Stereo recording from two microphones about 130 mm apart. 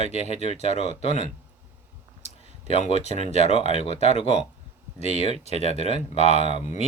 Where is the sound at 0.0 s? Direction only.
55° left (ahead or behind).